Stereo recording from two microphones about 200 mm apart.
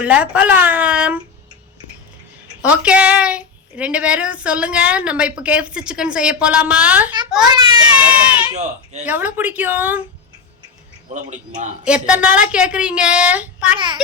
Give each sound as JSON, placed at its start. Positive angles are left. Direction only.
{"t": 0.0, "sound": "speech", "side_deg": -5}
{"t": 2.6, "sound": "a woman's voice", "side_deg": -5}
{"t": 7.4, "sound": "a child's voice", "side_deg": -20}
{"t": 7.9, "sound": "speech", "side_deg": -5}
{"t": 8.5, "sound": "a man's voice", "side_deg": -35}
{"t": 9.0, "sound": "speech", "side_deg": -10}
{"t": 11.1, "sound": "a man's voice", "side_deg": -40}
{"t": 11.9, "sound": "a woman's voice", "side_deg": -5}
{"t": 13.7, "sound": "a child's voice", "side_deg": -25}